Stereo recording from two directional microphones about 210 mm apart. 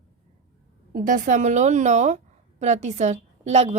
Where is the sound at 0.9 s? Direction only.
40° right (ahead or behind).